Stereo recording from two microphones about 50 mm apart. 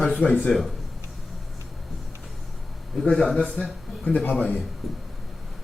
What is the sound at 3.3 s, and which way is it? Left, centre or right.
Speech, centre.